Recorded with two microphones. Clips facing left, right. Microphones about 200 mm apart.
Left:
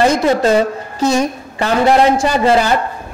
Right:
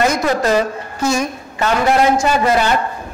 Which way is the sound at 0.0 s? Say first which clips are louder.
Left 4 dB; 25° left (ahead or behind).